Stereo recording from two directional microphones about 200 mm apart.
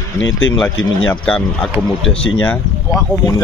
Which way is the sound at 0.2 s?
70° left (ahead or behind).